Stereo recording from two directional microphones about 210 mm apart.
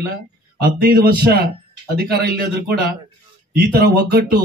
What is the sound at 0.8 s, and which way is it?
Speech, 45° right (ahead or behind).